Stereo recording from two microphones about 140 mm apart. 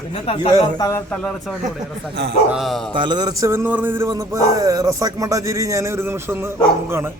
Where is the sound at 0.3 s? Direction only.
45° left (ahead or behind).